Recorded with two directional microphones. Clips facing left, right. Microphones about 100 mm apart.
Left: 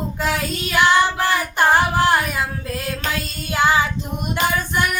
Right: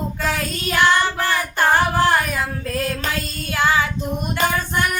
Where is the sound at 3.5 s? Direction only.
20° left (ahead or behind).